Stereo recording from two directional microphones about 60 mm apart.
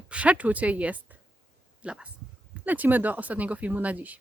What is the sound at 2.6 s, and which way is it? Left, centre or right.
A woman's voice, right.